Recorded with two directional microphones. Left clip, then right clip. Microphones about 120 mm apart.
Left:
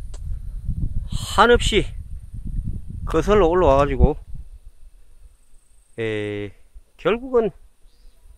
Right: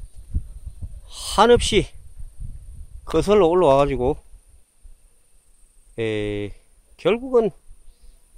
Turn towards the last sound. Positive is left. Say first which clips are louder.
# right 1 dB
turn(degrees=-25)  # may be behind; listen again after turning